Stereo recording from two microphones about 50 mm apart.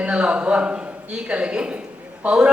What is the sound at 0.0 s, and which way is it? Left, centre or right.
A man's voice, right.